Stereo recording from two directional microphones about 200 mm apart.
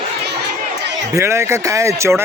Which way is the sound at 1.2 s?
15° right (ahead or behind).